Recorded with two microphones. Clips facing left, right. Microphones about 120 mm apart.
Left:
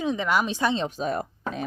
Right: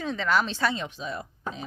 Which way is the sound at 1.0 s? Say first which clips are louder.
Left 7 dB; 50° left (ahead or behind).